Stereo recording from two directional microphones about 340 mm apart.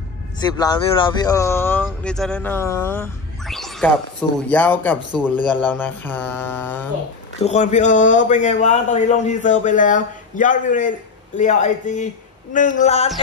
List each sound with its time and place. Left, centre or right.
0.4 s speech: centre
7.4 s a man's voice: centre